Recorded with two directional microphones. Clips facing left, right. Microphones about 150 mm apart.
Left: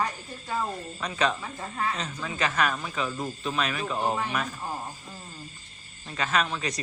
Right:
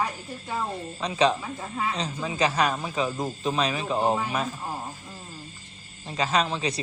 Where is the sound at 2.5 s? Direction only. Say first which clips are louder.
Right 2 dB; 30° right (ahead or behind).